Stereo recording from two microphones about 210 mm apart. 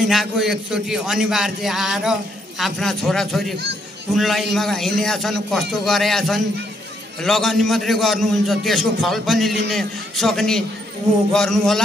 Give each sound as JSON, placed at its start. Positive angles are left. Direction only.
{"t": 0.0, "sound": "a man's voice", "side_deg": 0}